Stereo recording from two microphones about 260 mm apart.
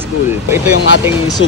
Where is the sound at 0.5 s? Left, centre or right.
Centre.